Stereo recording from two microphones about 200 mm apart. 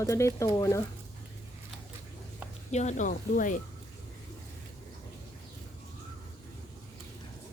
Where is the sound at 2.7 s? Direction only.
35° left (ahead or behind).